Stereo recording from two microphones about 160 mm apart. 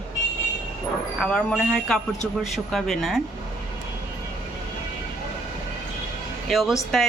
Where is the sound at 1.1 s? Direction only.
5° left (ahead or behind).